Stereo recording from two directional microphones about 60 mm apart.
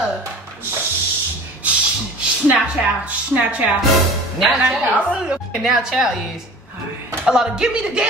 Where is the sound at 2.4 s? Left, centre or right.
Right.